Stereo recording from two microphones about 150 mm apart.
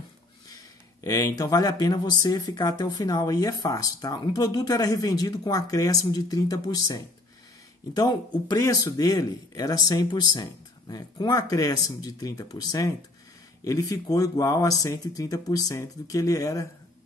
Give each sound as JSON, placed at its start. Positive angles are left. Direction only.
{"t": 1.0, "sound": "speech", "side_deg": 25}